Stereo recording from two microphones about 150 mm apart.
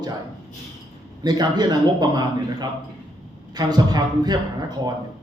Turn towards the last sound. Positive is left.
turn(degrees=-25)  # may be behind; listen again after turning